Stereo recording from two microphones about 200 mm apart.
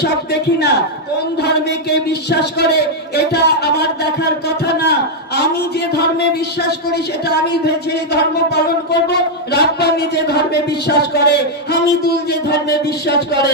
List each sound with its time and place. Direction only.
0.0 s a man's voice: 55° left (ahead or behind)
7.2 s speech: 55° left (ahead or behind)